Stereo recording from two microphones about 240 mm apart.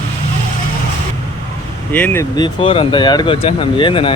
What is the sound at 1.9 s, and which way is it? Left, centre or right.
Speech, centre.